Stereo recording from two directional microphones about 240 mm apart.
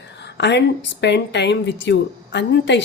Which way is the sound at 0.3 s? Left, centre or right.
Left.